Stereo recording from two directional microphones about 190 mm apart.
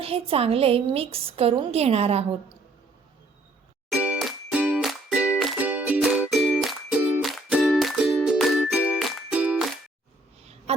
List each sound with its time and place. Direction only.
0.0 s a woman's voice: 30° right (ahead or behind)
3.8 s music: 5° right (ahead or behind)
10.7 s a sound: 35° right (ahead or behind)